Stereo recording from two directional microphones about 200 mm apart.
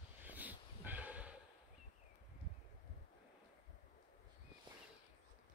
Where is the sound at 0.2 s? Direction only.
10° right (ahead or behind).